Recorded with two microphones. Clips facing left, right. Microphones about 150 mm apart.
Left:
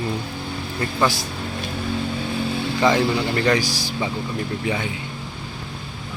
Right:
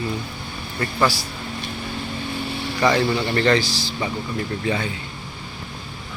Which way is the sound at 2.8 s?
20° left (ahead or behind).